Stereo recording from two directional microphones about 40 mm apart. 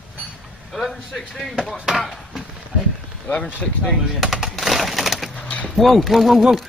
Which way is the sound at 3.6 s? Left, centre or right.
Left.